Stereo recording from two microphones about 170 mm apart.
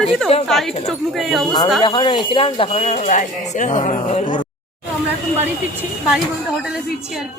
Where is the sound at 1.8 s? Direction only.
30° left (ahead or behind); by 4.3 s 45° left (ahead or behind).